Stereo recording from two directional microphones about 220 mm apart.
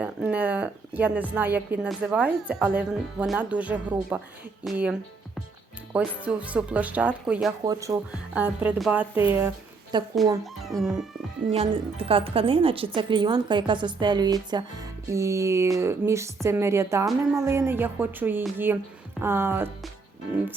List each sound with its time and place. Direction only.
0.0 s a woman's voice: 5° right (ahead or behind)
6.2 s speech: 5° right (ahead or behind)
7.6 s a woman's voice: 15° right (ahead or behind)
10.4 s speech: centre (ahead or behind)
11.5 s a woman's voice: 25° right (ahead or behind); by 19.7 s 10° right (ahead or behind)